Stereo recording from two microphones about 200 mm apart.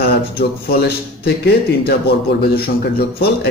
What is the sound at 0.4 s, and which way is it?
A man's voice, 50° left (ahead or behind).